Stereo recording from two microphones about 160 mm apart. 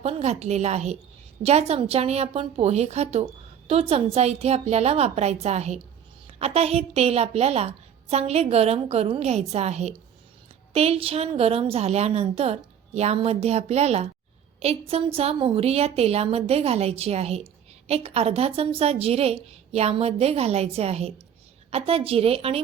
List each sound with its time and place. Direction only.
0.0 s a woman's voice: 40° right (ahead or behind)